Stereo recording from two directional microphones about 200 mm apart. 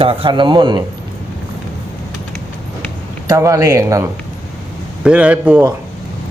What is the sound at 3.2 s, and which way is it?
Speech, 15° right (ahead or behind).